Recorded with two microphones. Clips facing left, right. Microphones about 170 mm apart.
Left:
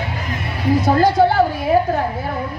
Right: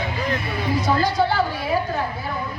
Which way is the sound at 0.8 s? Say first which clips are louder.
Left 6 dB; 55° left (ahead or behind).